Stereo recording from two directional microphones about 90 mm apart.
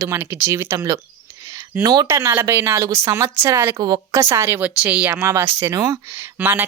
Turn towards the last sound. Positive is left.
turn(degrees=-20)  # may be behind; listen again after turning